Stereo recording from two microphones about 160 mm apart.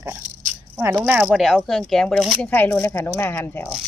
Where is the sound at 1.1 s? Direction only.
5° right (ahead or behind).